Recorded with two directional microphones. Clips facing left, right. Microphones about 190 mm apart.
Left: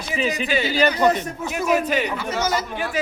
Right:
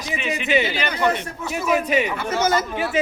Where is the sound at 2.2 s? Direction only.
55° right (ahead or behind).